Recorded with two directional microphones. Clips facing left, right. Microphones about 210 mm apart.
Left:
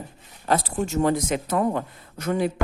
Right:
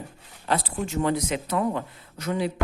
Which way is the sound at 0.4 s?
45° left (ahead or behind).